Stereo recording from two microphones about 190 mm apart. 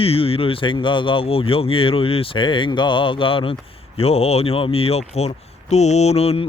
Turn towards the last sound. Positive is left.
turn(degrees=30)  # may be behind; listen again after turning